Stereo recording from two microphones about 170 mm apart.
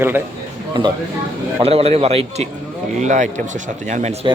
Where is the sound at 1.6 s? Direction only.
35° right (ahead or behind).